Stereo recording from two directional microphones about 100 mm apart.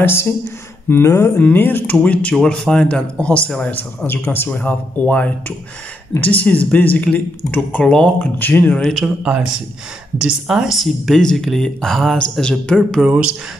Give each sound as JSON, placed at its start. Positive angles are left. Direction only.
{"t": 0.0, "sound": "speech", "side_deg": 25}
{"t": 8.8, "sound": "speech", "side_deg": -5}
{"t": 13.0, "sound": "speech", "side_deg": -10}